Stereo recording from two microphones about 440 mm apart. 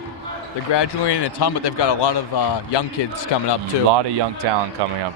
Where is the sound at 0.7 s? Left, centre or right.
Left.